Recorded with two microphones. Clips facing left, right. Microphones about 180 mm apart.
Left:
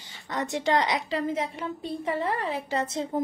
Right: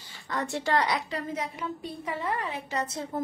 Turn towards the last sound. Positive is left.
turn(degrees=20)  # may be behind; listen again after turning